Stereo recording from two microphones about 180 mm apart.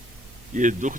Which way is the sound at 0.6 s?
45° right (ahead or behind).